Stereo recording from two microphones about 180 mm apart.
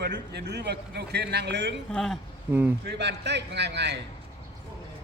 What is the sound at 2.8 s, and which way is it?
A man's voice, 70° right (ahead or behind).